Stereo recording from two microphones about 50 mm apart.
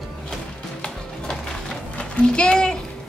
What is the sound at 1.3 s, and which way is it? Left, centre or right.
Music, centre.